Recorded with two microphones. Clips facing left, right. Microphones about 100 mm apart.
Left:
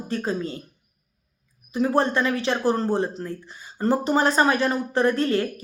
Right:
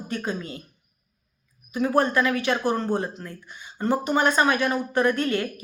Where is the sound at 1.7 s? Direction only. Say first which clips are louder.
Left 1 dB; 30° left (ahead or behind).